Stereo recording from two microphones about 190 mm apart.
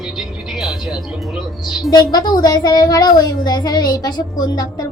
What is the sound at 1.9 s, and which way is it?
A woman's voice, 20° left (ahead or behind).